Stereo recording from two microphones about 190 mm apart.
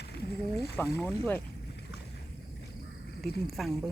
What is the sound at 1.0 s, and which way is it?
Speech, 10° left (ahead or behind).